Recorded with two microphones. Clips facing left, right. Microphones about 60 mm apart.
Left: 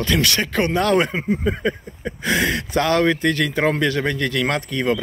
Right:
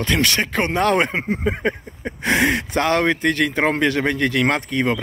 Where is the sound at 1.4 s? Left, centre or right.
Right.